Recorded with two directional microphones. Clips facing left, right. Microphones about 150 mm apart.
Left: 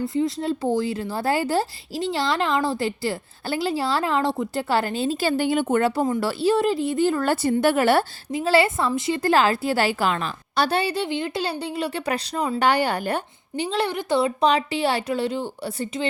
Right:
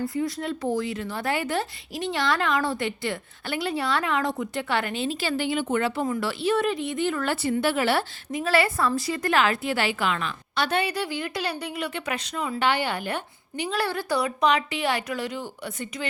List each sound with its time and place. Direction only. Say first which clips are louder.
0.0 s a woman's voice: left 4 dB; 25° left (ahead or behind); by 8.0 s 45° left (ahead or behind)
8.3 s a woman's voice: left 3 dB; 30° left (ahead or behind)